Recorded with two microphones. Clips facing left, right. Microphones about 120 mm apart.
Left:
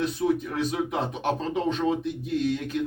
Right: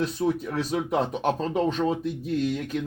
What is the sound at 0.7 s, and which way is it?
Speech, 40° right (ahead or behind).